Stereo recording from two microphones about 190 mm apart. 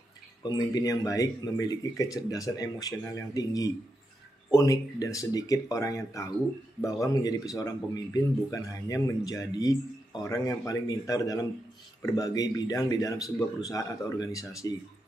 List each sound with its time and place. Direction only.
0.4 s speech: 20° left (ahead or behind)